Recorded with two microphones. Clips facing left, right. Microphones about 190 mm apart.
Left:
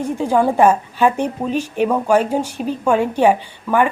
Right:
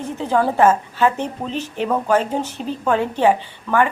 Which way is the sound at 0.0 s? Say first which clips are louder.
Left 3 dB; 10° left (ahead or behind).